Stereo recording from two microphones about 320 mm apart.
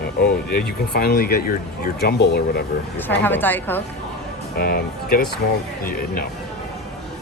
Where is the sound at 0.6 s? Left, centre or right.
Left.